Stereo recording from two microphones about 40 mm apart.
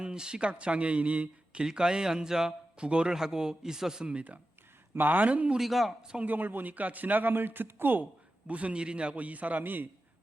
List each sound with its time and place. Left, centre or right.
0.0 s speech: centre
1.6 s speech: centre
2.7 s speech: right
4.0 s speech: right
4.9 s a man's voice: right
5.5 s speech: centre
6.0 s speech: centre
6.2 s a man's voice: right
8.4 s speech: right
9.1 s a man's voice: right